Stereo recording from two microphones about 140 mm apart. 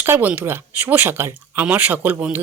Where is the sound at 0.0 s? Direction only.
15° right (ahead or behind).